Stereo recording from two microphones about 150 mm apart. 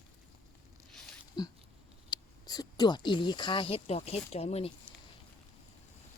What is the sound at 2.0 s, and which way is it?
Speech, 25° left (ahead or behind).